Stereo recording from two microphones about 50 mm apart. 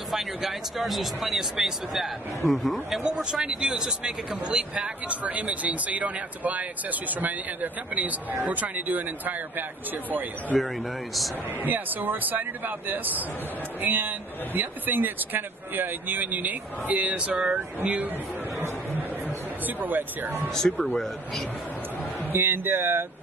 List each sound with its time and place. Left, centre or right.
0.1 s speech: centre
3.0 s speech: centre
4.8 s speech: right
10.5 s speech: left
11.6 s speech: right
18.9 s a sound: right
20.4 s speech: centre
20.7 s speech: left
21.0 s speech: centre
22.3 s speech: right